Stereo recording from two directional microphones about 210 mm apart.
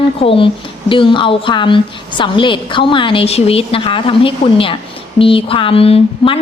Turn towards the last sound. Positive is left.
turn(degrees=25)  # may be behind; listen again after turning